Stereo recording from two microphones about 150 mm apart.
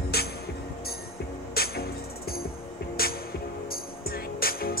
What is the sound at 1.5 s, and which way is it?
Music, 90° left.